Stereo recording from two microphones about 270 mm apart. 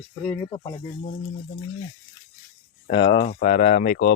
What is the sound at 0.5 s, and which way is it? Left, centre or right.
Speech, centre.